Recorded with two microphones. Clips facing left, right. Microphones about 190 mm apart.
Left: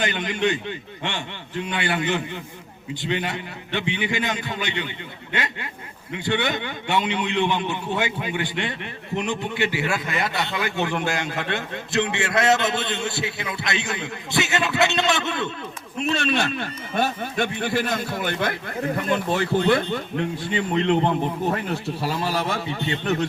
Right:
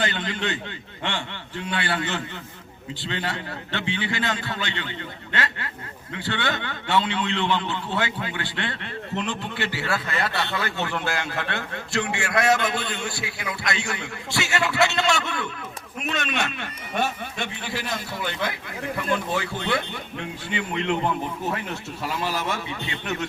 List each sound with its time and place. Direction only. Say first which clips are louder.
0.0 s a man's voice: left 4 dB; 15° left (ahead or behind)
16.0 s a man's voice: left 5 dB; 30° left (ahead or behind)